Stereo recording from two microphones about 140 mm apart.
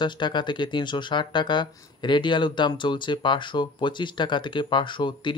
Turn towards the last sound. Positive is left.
turn(degrees=35)  # may be behind; listen again after turning